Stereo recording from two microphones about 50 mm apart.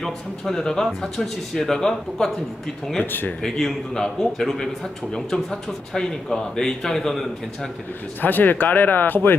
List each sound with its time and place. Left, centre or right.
0.0 s speech: centre
3.0 s speech: left
3.4 s speech: centre
8.2 s speech: left